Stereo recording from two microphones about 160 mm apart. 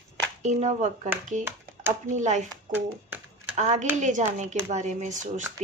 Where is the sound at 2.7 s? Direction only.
10° right (ahead or behind).